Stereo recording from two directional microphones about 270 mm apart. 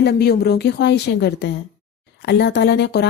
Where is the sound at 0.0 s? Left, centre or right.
Left.